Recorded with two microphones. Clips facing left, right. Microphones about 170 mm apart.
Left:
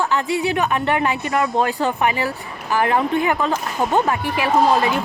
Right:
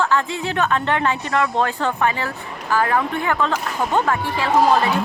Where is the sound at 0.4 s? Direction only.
15° left (ahead or behind).